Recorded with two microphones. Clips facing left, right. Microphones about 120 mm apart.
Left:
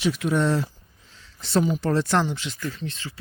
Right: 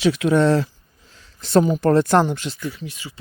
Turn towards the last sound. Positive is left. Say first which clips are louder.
# right 1 dB
turn(degrees=-10)  # may be behind; listen again after turning